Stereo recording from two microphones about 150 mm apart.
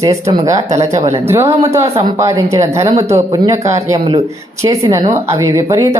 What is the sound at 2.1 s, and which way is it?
Speech, 20° right (ahead or behind).